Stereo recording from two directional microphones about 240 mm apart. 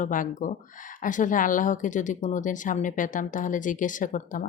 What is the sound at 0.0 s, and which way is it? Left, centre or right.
Speech, left.